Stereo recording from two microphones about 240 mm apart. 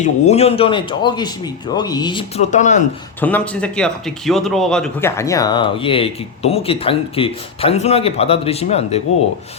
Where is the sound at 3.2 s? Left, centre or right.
Centre; by 9.0 s left.